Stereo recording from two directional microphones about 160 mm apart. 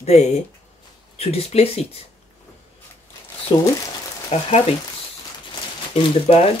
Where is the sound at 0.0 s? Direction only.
45° left (ahead or behind).